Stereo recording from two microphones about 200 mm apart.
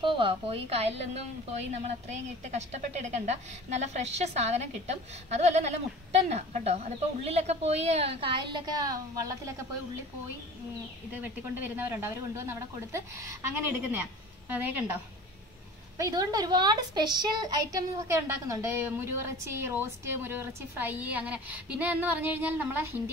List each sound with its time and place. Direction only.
0.0 s a woman's voice: 25° right (ahead or behind)
11.6 s a woman's voice: 10° right (ahead or behind)
16.0 s a woman's voice: 20° right (ahead or behind)